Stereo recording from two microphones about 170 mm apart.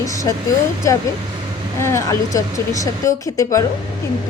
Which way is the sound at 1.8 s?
15° left (ahead or behind).